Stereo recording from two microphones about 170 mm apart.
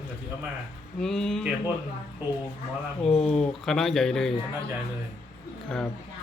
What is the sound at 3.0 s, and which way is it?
Speech, 35° left (ahead or behind).